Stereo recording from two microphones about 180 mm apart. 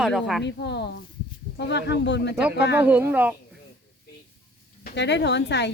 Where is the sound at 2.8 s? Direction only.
10° right (ahead or behind).